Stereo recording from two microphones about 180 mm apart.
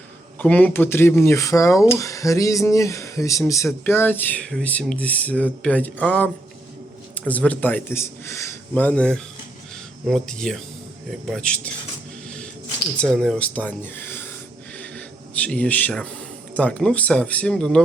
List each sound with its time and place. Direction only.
0.3 s speech: 10° left (ahead or behind)
13.0 s speech: 5° left (ahead or behind)
15.4 s speech: 5° left (ahead or behind)